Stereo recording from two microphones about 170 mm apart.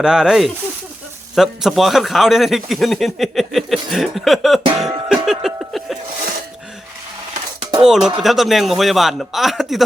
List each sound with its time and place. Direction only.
0.0 s speech: 5° right (ahead or behind)
4.8 s music: 5° right (ahead or behind)
7.6 s a sound: 30° right (ahead or behind)
7.9 s speech: centre (ahead or behind)